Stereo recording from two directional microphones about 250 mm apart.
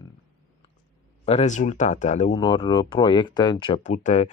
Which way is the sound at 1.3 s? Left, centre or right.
Left.